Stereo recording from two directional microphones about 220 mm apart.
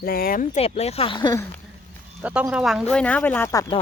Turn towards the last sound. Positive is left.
turn(degrees=15)  # may be behind; listen again after turning